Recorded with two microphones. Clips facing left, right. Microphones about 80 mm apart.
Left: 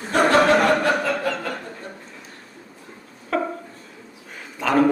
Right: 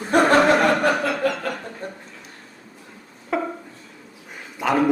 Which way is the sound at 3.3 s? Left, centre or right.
Centre.